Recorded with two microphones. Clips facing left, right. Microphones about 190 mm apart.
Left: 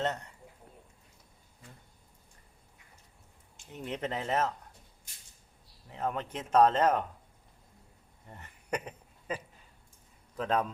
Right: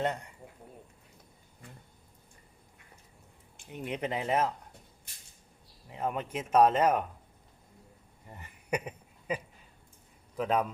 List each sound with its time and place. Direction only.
0.0 s speech: 10° right (ahead or behind)
3.7 s speech: 10° right (ahead or behind)
5.9 s speech: 10° right (ahead or behind)
8.3 s a sound: 10° right (ahead or behind)
10.3 s speech: 10° right (ahead or behind)